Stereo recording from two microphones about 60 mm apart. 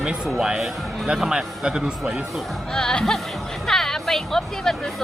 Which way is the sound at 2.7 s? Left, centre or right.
Centre.